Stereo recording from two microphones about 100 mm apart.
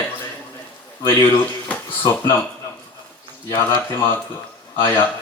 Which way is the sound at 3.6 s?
25° left (ahead or behind).